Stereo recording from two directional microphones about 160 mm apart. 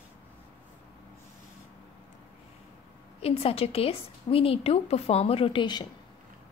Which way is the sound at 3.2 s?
40° left (ahead or behind).